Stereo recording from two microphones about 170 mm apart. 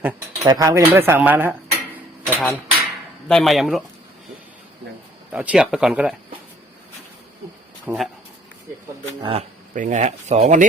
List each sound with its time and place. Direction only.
0.4 s speech: 20° right (ahead or behind)
2.4 s dishes: 5° left (ahead or behind)
5.3 s speech: 5° right (ahead or behind)
7.9 s speech: centre (ahead or behind)
9.2 s speech: 35° right (ahead or behind)
9.7 s speech: 50° right (ahead or behind)